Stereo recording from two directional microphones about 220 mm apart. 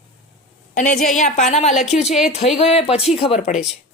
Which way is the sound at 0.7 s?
35° left (ahead or behind).